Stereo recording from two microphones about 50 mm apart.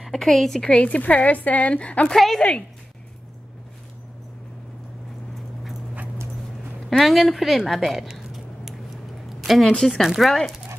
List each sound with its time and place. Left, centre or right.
0.1 s a woman's voice: centre
0.8 s speech: left
2.0 s a woman's voice: centre
7.0 s a woman's voice: centre
8.1 s a sound: centre
9.8 s a woman's voice: centre
10.0 s a woman's voice: centre